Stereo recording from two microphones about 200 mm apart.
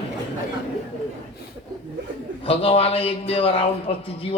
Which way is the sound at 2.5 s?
30° left (ahead or behind).